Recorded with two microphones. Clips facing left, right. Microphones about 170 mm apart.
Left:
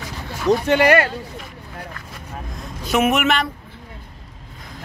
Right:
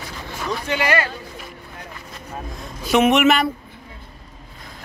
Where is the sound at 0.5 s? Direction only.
55° left (ahead or behind).